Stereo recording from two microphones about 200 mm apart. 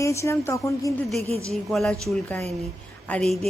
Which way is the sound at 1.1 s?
30° right (ahead or behind).